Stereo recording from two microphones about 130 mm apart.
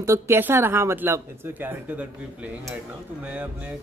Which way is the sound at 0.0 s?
20° right (ahead or behind).